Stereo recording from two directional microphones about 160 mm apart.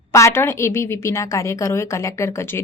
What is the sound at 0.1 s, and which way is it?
A woman's voice, 15° left (ahead or behind).